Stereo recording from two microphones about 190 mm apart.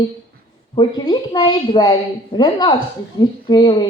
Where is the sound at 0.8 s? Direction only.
25° left (ahead or behind).